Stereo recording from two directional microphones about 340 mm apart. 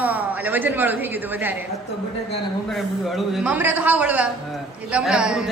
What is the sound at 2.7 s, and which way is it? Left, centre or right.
A woman's voice, centre.